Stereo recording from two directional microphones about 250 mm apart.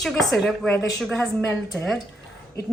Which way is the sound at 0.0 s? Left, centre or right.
Centre.